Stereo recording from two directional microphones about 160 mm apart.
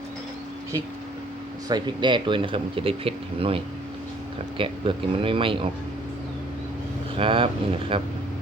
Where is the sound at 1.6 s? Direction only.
25° right (ahead or behind).